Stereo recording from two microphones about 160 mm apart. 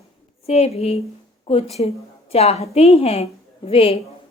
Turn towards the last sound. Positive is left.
turn(degrees=40)  # may be behind; listen again after turning